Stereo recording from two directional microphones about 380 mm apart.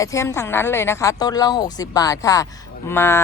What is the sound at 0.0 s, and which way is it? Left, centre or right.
A woman's voice, centre.